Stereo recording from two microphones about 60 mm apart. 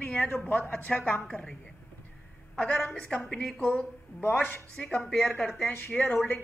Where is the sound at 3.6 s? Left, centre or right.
Centre.